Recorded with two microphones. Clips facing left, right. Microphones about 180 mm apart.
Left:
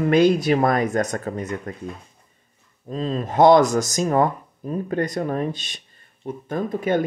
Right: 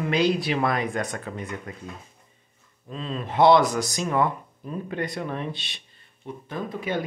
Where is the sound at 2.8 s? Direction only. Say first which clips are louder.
Left 7 dB; 40° left (ahead or behind).